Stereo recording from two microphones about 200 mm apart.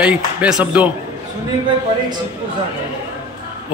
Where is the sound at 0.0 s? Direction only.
5° right (ahead or behind).